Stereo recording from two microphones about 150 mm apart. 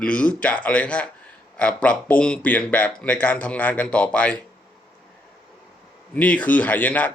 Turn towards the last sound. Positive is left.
turn(degrees=10)  # may be behind; listen again after turning